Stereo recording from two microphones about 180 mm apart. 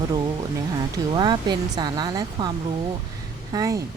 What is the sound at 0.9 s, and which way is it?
Speech, 25° right (ahead or behind).